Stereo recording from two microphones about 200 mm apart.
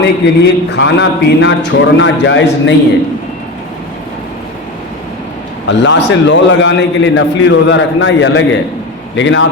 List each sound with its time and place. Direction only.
0.0 s a man's voice: 60° left (ahead or behind)
5.6 s a man's voice: 65° left (ahead or behind)